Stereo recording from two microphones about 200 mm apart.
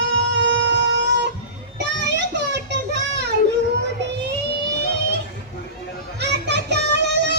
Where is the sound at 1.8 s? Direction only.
60° right (ahead or behind).